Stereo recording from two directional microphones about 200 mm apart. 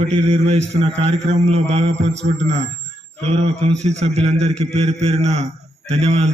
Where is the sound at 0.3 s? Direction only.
30° right (ahead or behind).